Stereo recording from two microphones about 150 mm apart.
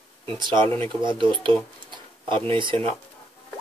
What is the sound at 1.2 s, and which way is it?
Tick-tock, 35° right (ahead or behind).